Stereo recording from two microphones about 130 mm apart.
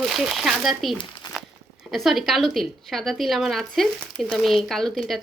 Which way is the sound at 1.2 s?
35° left (ahead or behind).